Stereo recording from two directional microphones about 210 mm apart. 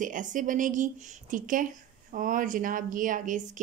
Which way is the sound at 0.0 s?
40° right (ahead or behind).